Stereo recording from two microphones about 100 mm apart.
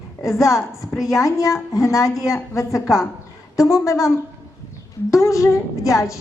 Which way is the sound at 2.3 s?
30° left (ahead or behind).